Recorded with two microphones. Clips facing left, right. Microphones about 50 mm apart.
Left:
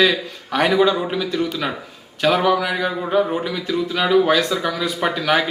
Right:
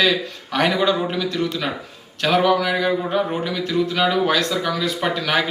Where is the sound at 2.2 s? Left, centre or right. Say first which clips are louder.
Even; centre.